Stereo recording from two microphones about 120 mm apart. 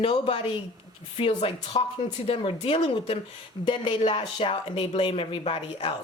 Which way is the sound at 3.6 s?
40° left (ahead or behind).